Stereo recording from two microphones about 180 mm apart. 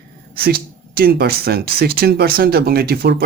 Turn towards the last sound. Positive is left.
turn(degrees=-60)  # may be behind; listen again after turning